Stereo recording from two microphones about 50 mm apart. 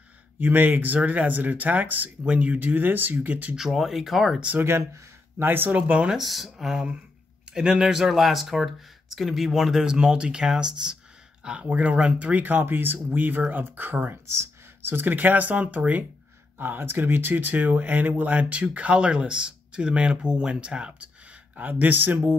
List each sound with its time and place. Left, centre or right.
0.4 s speech: right
3.5 s speech: centre
4.6 s speech: right
5.7 s speech: right
6.1 s speech: centre; by 14.1 s right
14.2 s a sound: right
14.9 s speech: right
16.5 s speech: right